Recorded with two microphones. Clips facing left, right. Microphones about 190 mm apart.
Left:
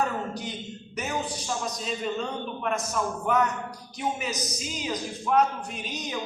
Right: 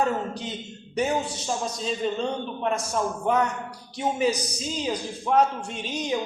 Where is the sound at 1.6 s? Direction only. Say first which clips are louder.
Right 5 dB; 30° right (ahead or behind).